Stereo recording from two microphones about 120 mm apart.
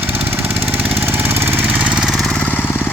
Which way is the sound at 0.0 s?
15° right (ahead or behind).